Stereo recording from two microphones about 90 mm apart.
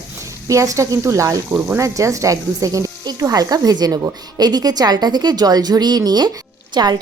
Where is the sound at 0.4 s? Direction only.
35° right (ahead or behind).